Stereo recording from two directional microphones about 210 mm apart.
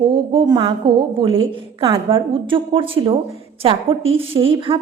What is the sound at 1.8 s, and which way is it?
A woman's voice, 25° right (ahead or behind).